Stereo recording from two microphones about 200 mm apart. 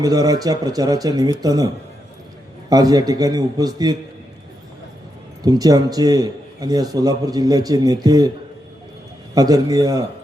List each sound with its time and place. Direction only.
0.0 s a man's voice: 20° right (ahead or behind)
5.4 s a man's voice: 20° right (ahead or behind)
9.3 s a man's voice: 20° right (ahead or behind)